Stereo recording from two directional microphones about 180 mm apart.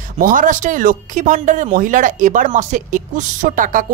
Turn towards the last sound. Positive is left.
turn(degrees=-50)  # may be behind; listen again after turning